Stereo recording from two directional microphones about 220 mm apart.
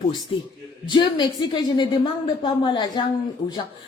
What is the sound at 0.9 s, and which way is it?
Speech, 20° left (ahead or behind).